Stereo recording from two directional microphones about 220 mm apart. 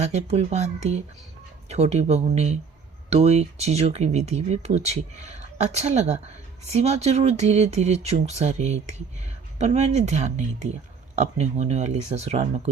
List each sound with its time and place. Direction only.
0.0 s speech: 30° right (ahead or behind)